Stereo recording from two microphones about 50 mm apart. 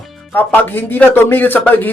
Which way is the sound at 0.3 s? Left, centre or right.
Left.